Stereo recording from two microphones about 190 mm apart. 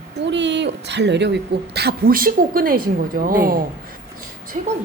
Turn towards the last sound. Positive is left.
turn(degrees=-35)  # may be behind; listen again after turning